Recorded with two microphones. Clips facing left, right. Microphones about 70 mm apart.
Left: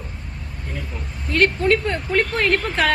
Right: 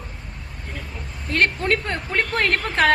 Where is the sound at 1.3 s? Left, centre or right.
Right.